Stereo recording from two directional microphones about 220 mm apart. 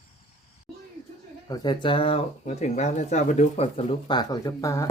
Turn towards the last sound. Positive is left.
turn(degrees=15)  # may be behind; listen again after turning